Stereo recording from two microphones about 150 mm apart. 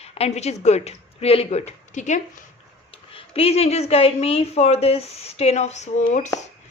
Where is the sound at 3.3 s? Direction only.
40° left (ahead or behind).